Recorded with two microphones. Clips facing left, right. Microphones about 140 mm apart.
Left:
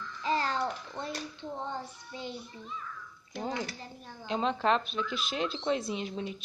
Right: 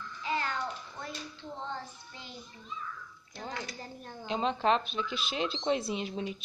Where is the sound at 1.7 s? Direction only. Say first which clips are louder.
Left 2 dB; 20° left (ahead or behind).